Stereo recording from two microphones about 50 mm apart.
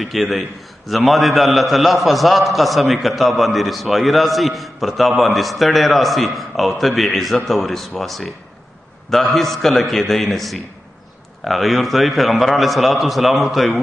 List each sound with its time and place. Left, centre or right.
0.0 s a man's voice: centre